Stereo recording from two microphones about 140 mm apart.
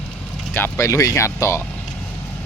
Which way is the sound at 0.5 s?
20° left (ahead or behind).